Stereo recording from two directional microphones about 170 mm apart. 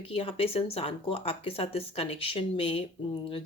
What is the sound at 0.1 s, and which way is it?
Speech, 35° left (ahead or behind).